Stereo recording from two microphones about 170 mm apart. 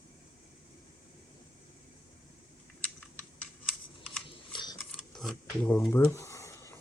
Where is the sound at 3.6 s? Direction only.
Centre (ahead or behind).